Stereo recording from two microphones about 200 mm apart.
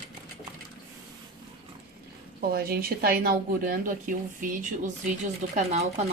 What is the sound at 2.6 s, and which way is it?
Speech, 50° right (ahead or behind).